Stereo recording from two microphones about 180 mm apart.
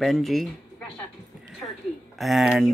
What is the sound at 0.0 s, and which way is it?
Speech, centre (ahead or behind).